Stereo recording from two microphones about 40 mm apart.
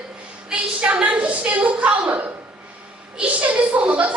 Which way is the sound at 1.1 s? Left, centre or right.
Right.